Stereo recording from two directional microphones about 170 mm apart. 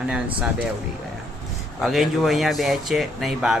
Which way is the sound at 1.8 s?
Centre (ahead or behind).